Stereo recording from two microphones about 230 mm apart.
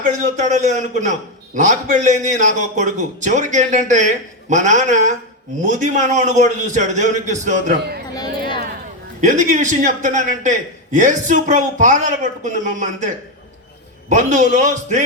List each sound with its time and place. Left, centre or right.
0.0 s a man's voice: right
9.2 s a man's voice: right
14.1 s a man's voice: right